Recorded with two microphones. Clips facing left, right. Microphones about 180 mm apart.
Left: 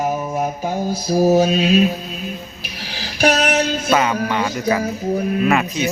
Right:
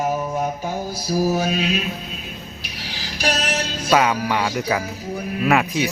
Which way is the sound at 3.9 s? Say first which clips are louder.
Right 4 dB; 10° right (ahead or behind).